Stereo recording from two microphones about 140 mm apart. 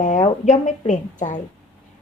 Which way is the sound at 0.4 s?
60° left (ahead or behind).